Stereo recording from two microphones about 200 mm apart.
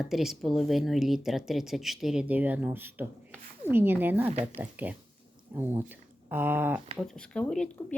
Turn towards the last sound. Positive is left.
turn(degrees=5)  # may be behind; listen again after turning